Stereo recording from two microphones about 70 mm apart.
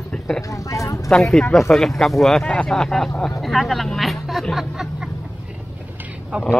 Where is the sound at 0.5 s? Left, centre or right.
Left.